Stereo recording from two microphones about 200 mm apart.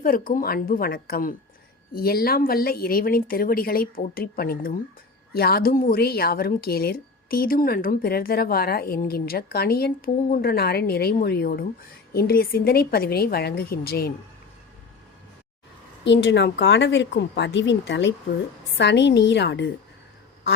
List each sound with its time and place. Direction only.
0.0 s a woman's voice: 45° left (ahead or behind)
16.0 s speech: 60° left (ahead or behind)